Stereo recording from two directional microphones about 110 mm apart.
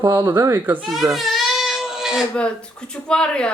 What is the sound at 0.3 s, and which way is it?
Speech, 35° right (ahead or behind).